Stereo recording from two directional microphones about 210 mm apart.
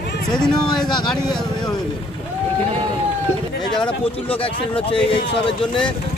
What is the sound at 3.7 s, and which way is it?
Speech, 25° left (ahead or behind).